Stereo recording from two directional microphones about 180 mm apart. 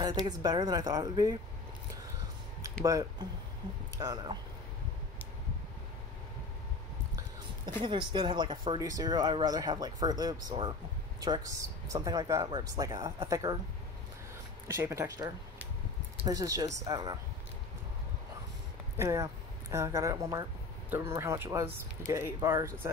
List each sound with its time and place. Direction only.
0.4 s speech: 25° right (ahead or behind)
2.8 s speech: 20° right (ahead or behind)
7.8 s speech: 25° right (ahead or behind)
14.7 s speech: 15° right (ahead or behind)
18.9 s speech: 15° right (ahead or behind)